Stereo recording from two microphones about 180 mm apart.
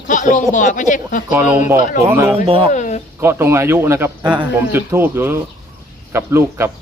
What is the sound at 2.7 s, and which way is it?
Speech, 40° left (ahead or behind).